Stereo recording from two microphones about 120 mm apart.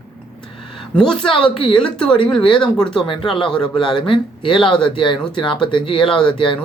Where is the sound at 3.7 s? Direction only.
40° left (ahead or behind).